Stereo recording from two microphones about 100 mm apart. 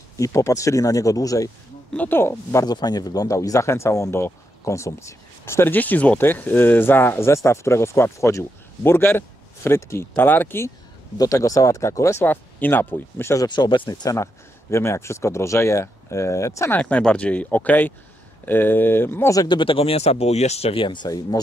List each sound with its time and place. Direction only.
0.2 s speech: 30° left (ahead or behind)
2.0 s speech: 20° left (ahead or behind)
2.6 s speech: 40° left (ahead or behind); by 10.7 s 20° left (ahead or behind)
11.1 s speech: 35° left (ahead or behind)
12.3 s speech: 20° left (ahead or behind)
13.5 s speech: 45° left (ahead or behind); by 16.7 s 30° left (ahead or behind)
16.7 s speech: 15° left (ahead or behind)
19.4 s speech: 55° left (ahead or behind)